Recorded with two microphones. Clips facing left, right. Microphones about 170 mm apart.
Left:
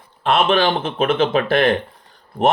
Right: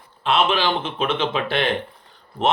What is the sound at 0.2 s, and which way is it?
Speech, 50° left (ahead or behind).